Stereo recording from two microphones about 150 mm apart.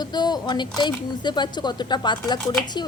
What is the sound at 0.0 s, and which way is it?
Speech, 30° left (ahead or behind).